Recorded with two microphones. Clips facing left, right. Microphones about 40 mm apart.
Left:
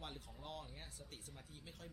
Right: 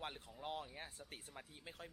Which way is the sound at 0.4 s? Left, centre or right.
Centre.